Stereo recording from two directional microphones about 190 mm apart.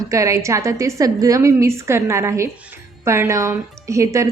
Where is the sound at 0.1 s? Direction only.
15° right (ahead or behind).